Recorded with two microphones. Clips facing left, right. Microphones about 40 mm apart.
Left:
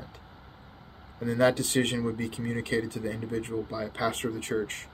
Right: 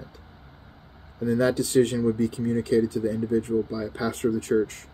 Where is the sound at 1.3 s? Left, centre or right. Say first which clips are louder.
Right 2 dB; left.